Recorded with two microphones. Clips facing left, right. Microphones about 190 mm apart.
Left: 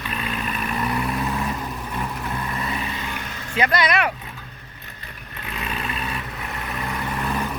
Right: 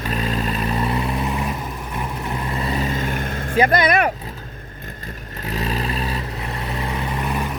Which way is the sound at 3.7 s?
50° right (ahead or behind).